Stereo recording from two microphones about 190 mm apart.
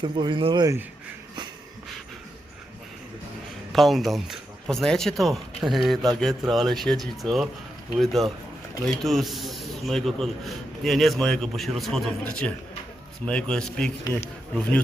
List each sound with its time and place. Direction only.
0.0 s speech: 25° right (ahead or behind)
3.7 s a man's voice: centre (ahead or behind)